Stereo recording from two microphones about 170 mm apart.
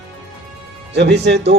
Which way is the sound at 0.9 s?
80° right.